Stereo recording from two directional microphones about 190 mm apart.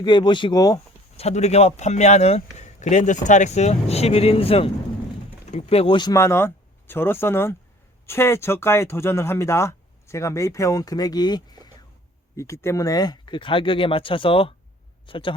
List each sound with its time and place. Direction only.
0.0 s speech: 25° left (ahead or behind)
1.1 s a man's voice: 35° left (ahead or behind)